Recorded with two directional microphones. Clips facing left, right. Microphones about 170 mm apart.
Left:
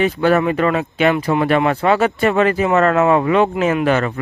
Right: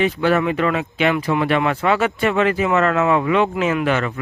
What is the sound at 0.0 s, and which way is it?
Speech, 45° left (ahead or behind).